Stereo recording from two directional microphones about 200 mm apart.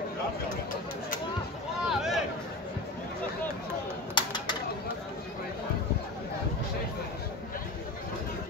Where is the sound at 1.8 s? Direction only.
Centre (ahead or behind).